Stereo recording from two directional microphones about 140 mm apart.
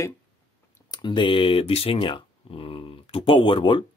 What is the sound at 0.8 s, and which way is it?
Speech, 30° left (ahead or behind).